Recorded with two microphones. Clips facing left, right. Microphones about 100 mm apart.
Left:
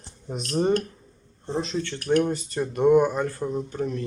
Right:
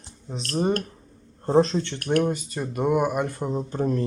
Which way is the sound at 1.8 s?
20° right (ahead or behind).